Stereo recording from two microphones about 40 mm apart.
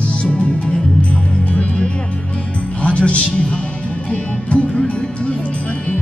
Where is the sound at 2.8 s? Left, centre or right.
Left.